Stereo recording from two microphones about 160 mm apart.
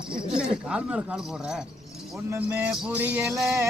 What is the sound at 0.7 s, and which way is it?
Speech, 5° right (ahead or behind).